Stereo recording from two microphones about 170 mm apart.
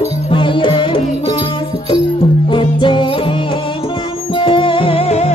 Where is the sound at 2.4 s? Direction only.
30° left (ahead or behind).